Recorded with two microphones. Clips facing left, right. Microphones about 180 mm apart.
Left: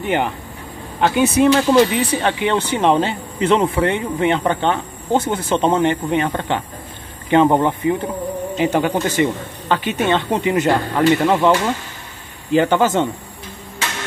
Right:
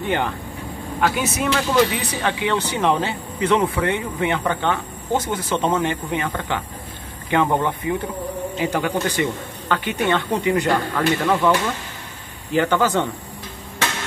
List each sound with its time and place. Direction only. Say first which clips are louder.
0.0 s speech: left 3 dB; 15° left (ahead or behind)
1.0 s speech: left 8 dB; 25° left (ahead or behind)